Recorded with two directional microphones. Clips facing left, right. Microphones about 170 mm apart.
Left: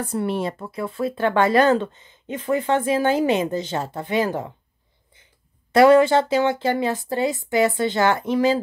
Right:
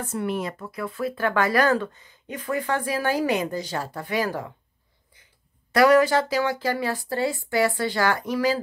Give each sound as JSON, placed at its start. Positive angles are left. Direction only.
{"t": 0.0, "sound": "speech", "side_deg": 30}
{"t": 5.7, "sound": "speech", "side_deg": 25}